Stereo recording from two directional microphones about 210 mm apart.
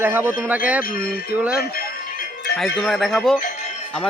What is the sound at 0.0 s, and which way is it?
Speech, 10° right (ahead or behind).